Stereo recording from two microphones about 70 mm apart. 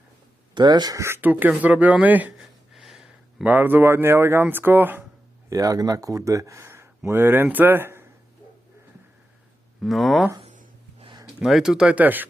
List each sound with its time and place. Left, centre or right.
0.5 s speech: right
0.9 s speech: right
1.2 s speech: right
2.7 s a sound: centre
3.4 s speech: right
5.5 s speech: right
9.8 s speech: centre
11.4 s speech: centre; by 12.3 s right